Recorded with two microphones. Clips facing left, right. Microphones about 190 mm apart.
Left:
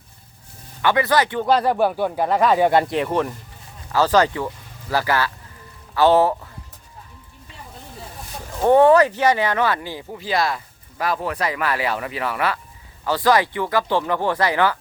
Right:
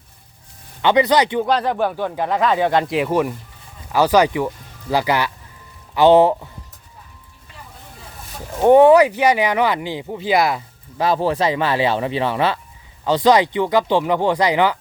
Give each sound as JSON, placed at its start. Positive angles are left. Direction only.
{"t": 0.8, "sound": "speech", "side_deg": -20}
{"t": 1.5, "sound": "speech", "side_deg": 5}
{"t": 2.9, "sound": "speech", "side_deg": -5}
{"t": 8.6, "sound": "speech", "side_deg": -15}